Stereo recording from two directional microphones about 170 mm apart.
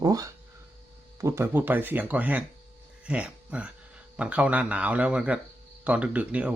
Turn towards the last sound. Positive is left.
turn(degrees=-10)  # may be behind; listen again after turning